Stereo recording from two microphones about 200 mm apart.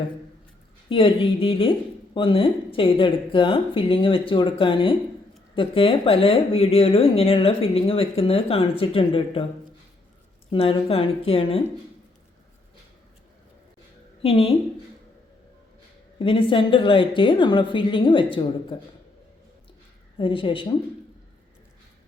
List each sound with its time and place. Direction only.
0.9 s speech: 25° left (ahead or behind)
10.5 s speech: 30° left (ahead or behind)
14.2 s a woman's voice: 30° left (ahead or behind)
16.1 s speech: 25° left (ahead or behind)
20.1 s speech: 25° left (ahead or behind)